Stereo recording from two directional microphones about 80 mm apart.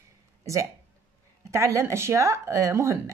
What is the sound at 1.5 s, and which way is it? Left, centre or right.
Speech, right.